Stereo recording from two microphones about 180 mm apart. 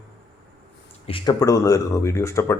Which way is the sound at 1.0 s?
25° left (ahead or behind).